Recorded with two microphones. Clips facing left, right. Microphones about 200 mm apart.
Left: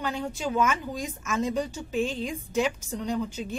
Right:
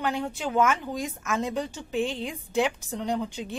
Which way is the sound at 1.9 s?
15° right (ahead or behind).